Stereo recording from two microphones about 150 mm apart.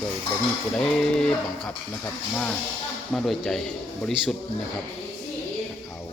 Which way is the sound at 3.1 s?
Centre (ahead or behind).